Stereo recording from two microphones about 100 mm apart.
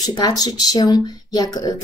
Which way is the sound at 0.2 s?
40° left (ahead or behind).